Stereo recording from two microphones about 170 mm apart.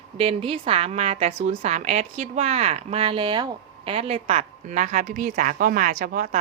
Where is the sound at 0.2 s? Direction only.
35° right (ahead or behind).